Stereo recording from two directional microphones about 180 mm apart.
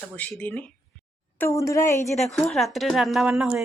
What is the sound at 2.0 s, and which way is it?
A woman's voice, centre (ahead or behind).